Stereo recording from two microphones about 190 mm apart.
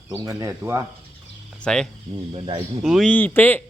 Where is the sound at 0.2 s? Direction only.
20° right (ahead or behind).